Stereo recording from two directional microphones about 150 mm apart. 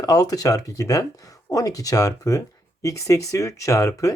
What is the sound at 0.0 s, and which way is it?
Speech, 25° left (ahead or behind).